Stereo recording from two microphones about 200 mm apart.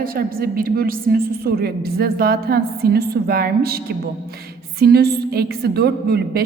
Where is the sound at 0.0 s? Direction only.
45° right (ahead or behind).